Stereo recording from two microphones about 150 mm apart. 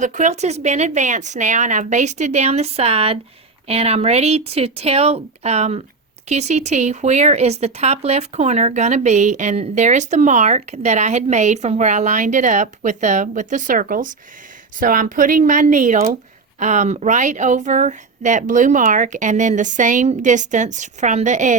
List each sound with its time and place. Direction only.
0.0 s speech: 55° right (ahead or behind)